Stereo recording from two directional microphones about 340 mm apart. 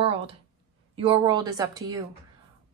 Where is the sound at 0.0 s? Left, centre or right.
Centre.